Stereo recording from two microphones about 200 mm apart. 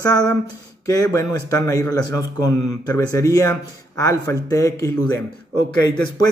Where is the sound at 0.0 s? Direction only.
20° left (ahead or behind).